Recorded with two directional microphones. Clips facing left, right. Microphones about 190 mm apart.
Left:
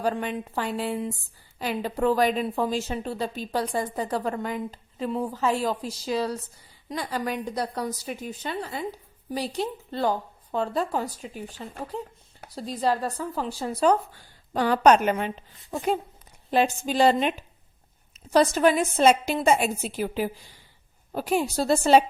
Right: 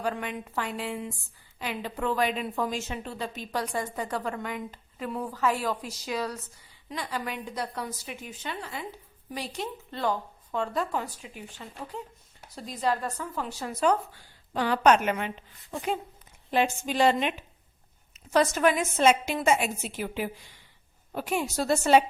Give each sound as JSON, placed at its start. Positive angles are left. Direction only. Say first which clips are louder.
{"t": 0.0, "sound": "a woman's voice", "louder": "left 4 dB", "side_deg": 35}